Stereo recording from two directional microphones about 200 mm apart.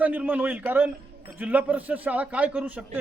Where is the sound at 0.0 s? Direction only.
10° right (ahead or behind).